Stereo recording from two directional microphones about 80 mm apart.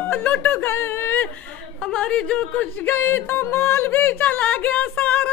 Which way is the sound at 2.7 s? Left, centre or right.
Left.